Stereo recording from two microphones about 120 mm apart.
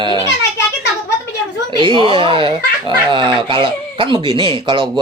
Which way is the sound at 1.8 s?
45° right (ahead or behind).